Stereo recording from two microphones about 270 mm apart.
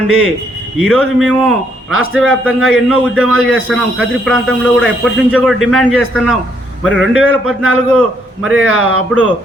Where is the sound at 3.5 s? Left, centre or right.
Centre.